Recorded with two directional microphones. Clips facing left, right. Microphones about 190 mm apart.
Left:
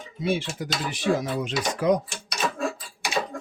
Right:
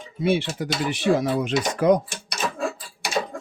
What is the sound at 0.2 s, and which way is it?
Speech, 60° right (ahead or behind).